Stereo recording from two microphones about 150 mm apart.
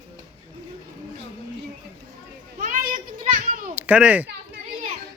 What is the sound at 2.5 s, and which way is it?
Children playing, 60° right (ahead or behind).